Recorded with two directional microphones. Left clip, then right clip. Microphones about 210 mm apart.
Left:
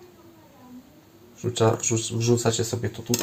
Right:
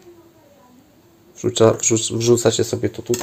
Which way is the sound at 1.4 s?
45° right (ahead or behind).